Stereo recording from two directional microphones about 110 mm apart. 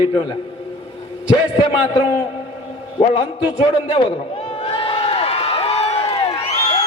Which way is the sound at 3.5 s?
50° left (ahead or behind).